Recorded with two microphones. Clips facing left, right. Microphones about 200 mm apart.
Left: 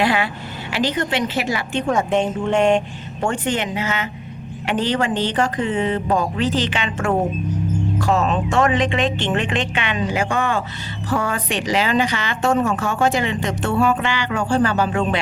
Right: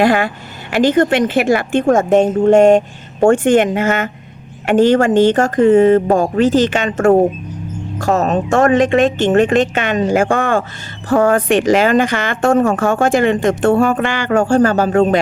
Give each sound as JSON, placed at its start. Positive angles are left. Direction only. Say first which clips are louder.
{"t": 0.0, "sound": "speech", "louder": "right 6 dB", "side_deg": -45}